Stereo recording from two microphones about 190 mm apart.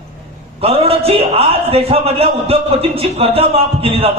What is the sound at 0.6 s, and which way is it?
A man's voice, 30° right (ahead or behind).